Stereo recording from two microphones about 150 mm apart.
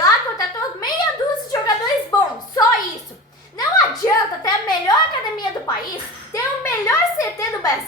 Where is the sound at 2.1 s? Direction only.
25° left (ahead or behind).